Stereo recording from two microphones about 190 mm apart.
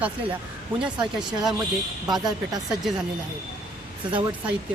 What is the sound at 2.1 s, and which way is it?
Speech, 20° right (ahead or behind).